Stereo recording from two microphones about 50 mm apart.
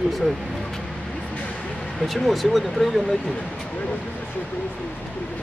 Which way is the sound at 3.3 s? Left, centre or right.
Left.